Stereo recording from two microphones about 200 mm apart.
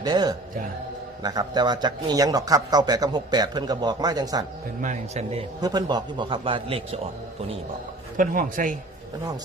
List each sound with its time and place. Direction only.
0.0 s a man's voice: 20° right (ahead or behind)
4.8 s a man's voice: 35° right (ahead or behind)
5.5 s a man's voice: 20° right (ahead or behind)
8.1 s a man's voice: 40° right (ahead or behind)